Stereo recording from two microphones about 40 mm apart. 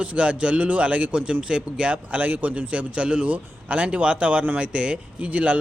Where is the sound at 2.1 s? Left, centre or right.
Right.